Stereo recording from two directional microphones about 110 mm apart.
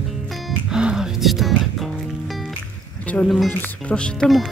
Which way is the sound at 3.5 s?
15° left (ahead or behind).